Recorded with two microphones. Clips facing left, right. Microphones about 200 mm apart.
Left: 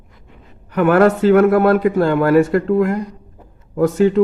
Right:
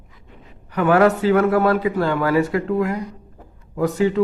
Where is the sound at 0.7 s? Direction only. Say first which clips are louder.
Left 3 dB; 50° left (ahead or behind).